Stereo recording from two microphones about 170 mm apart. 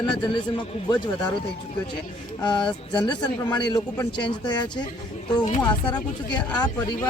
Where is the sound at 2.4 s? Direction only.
25° left (ahead or behind).